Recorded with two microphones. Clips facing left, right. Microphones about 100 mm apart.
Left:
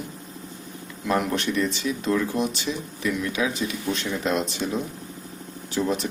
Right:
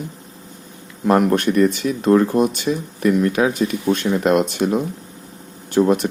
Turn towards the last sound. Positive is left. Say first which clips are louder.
# right 9 dB
turn(degrees=-55)  # may be behind; listen again after turning